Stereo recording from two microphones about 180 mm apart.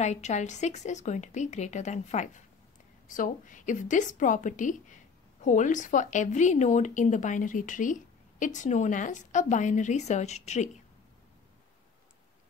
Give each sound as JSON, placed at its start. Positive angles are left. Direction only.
{"t": 0.0, "sound": "a woman's voice", "side_deg": 40}